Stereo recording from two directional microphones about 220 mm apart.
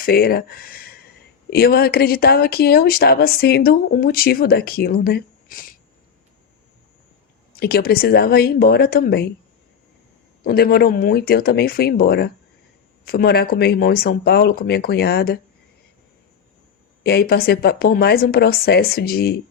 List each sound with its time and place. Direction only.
0.0 s speech: 45° left (ahead or behind)
7.6 s speech: 45° left (ahead or behind)
10.4 s speech: 45° left (ahead or behind)
17.0 s speech: 45° left (ahead or behind)